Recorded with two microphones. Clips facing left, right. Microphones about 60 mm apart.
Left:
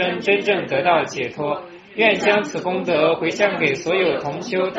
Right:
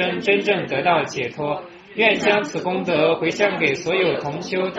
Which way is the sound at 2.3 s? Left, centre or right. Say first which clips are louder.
Left 1 dB; centre.